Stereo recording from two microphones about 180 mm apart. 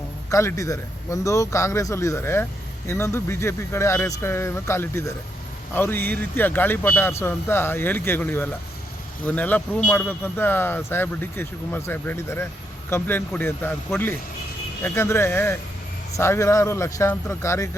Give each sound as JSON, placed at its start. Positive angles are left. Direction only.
{"t": 0.3, "sound": "speech", "side_deg": 15}